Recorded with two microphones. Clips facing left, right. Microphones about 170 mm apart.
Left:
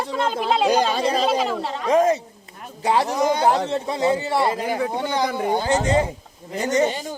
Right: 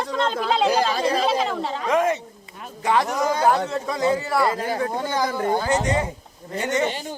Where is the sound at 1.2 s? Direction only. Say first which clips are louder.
Left 1 dB; centre (ahead or behind).